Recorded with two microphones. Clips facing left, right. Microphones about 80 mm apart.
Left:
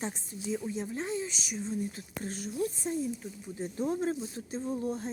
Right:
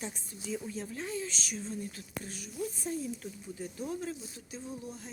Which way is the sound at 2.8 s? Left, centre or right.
Left.